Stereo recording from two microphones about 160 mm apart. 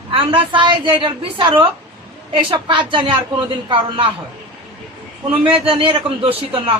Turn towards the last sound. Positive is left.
turn(degrees=-35)  # may be behind; listen again after turning